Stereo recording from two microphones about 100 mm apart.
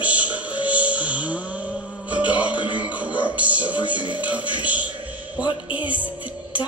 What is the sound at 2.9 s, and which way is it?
Music, 15° right (ahead or behind).